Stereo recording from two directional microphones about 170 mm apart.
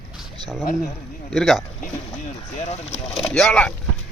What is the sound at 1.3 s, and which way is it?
Speech, centre (ahead or behind).